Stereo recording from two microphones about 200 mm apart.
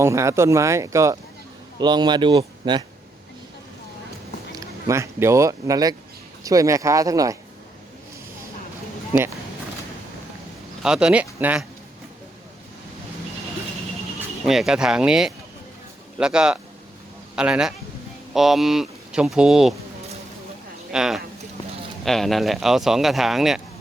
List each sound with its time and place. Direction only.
0.0 s speech: 15° right (ahead or behind)
4.5 s speech: 15° right (ahead or behind)
10.8 s speech: 5° right (ahead or behind)
14.4 s speech: centre (ahead or behind)
20.9 s speech: 5° right (ahead or behind)